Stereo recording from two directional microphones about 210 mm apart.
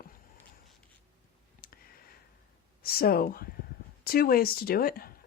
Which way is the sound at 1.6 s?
40° left (ahead or behind).